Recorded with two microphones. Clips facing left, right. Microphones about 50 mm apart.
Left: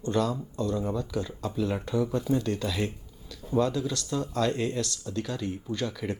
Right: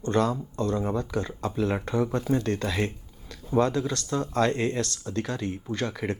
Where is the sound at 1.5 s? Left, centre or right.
Right.